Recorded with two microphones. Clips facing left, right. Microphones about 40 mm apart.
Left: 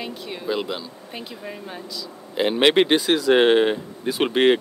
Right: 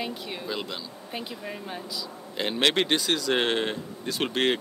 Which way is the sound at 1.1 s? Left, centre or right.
Centre.